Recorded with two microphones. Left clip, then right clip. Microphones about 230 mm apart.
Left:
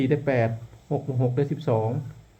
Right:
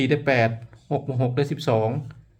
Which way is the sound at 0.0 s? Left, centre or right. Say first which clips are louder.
Right 3 dB; centre.